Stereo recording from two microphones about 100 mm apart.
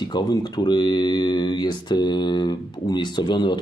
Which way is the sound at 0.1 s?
45° left (ahead or behind).